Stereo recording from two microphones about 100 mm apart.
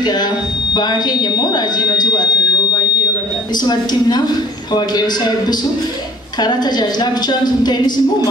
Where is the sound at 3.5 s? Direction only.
45° left (ahead or behind).